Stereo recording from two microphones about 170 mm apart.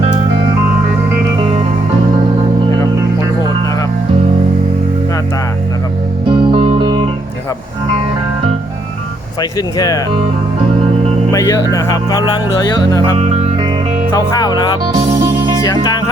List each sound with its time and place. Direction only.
6.2 s music: 30° right (ahead or behind)
9.4 s speech: 25° left (ahead or behind)
11.3 s speech: 20° left (ahead or behind)
14.2 s speech: 25° left (ahead or behind)